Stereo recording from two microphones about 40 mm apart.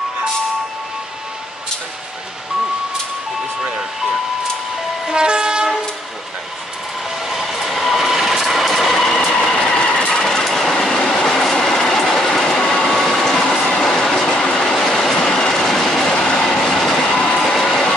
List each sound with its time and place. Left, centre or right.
5.0 s train: right
7.2 s vehicle: centre
8.9 s train: centre
10.1 s train: centre
10.7 s train: centre
14.3 s train: left
14.6 s train: centre